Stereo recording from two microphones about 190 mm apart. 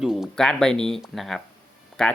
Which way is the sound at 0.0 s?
Centre (ahead or behind).